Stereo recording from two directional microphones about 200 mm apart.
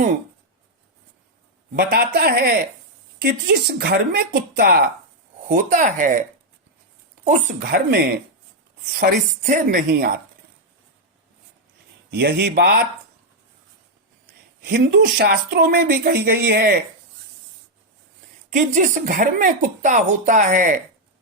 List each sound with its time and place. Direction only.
1.7 s speech: 50° right (ahead or behind)
5.5 s speech: 40° right (ahead or behind)
7.3 s speech: 45° right (ahead or behind)
12.1 s a man's voice: 55° right (ahead or behind)
14.6 s speech: 55° right (ahead or behind)
18.5 s speech: 40° right (ahead or behind)